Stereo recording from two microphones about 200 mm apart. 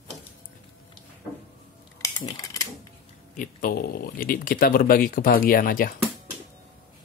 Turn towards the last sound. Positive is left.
turn(degrees=45)  # may be behind; listen again after turning